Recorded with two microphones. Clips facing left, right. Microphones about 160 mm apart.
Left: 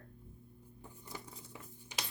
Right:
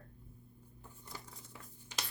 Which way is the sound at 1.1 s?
15° left (ahead or behind).